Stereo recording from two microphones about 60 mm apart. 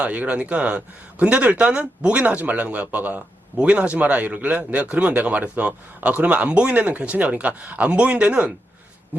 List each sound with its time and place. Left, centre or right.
0.0 s a man's voice: right